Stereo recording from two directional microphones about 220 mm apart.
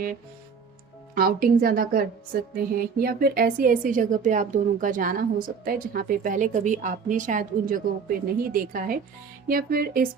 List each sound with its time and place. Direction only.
1.1 s a woman's voice: 40° right (ahead or behind)